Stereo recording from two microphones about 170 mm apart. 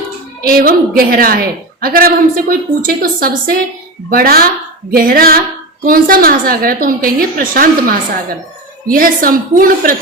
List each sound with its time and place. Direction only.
0.4 s a woman's voice: 60° right (ahead or behind)